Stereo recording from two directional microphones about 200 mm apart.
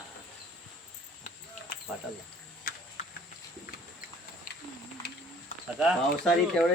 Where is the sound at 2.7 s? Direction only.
45° left (ahead or behind).